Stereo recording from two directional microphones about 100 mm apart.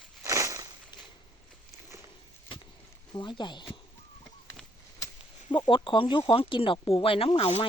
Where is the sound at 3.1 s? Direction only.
50° left (ahead or behind).